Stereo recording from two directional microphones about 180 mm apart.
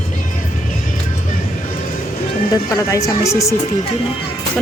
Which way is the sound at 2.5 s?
20° left (ahead or behind).